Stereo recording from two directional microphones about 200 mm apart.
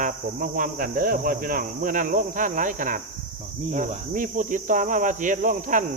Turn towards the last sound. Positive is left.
turn(degrees=-40)  # may be behind; listen again after turning